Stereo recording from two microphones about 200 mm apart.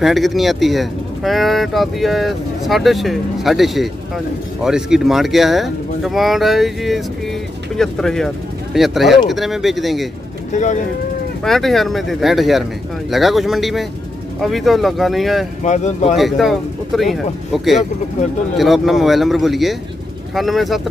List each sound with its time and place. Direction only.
0.0 s speech: centre (ahead or behind)
10.5 s speech: 35° left (ahead or behind)
11.4 s speech: centre (ahead or behind)
15.6 s speech: 35° left (ahead or behind)
16.2 s speech: centre (ahead or behind)